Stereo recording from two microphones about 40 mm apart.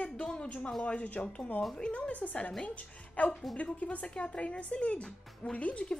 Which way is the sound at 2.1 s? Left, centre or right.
Left.